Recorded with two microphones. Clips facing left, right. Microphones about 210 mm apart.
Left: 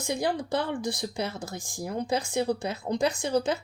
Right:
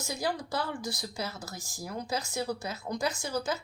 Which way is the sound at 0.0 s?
25° left (ahead or behind).